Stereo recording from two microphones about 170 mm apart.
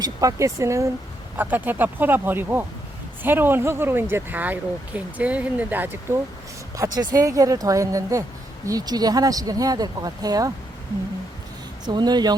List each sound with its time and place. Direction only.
0.0 s speech: 20° right (ahead or behind)
11.9 s speech: 25° right (ahead or behind)